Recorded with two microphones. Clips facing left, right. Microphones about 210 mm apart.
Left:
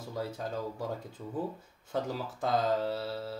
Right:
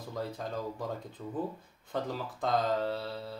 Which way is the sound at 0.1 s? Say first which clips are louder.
Left 1 dB; 5° left (ahead or behind).